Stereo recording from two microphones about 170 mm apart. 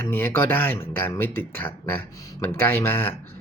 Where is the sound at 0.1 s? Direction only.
10° left (ahead or behind).